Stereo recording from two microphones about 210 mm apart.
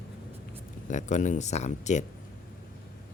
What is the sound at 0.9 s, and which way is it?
Speech, 35° left (ahead or behind).